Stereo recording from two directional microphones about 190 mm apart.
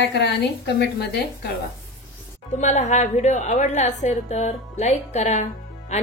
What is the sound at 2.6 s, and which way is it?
Speech, 40° left (ahead or behind).